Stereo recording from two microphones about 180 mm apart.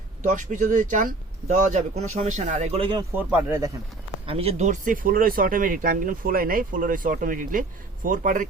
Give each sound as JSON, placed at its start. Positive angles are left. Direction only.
{"t": 0.2, "sound": "speech", "side_deg": -45}
{"t": 3.2, "sound": "speech", "side_deg": -10}
{"t": 4.3, "sound": "speech", "side_deg": -35}